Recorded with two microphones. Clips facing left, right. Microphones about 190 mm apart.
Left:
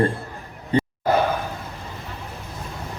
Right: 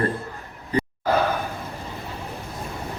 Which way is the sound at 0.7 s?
30° left (ahead or behind).